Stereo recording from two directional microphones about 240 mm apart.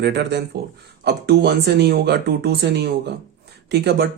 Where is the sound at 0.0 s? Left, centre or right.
Right.